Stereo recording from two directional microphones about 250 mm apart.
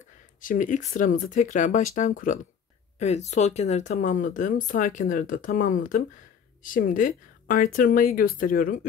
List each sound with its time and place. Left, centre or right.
0.4 s speech: left